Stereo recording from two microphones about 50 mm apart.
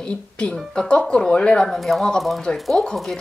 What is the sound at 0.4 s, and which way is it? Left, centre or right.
Speech, left.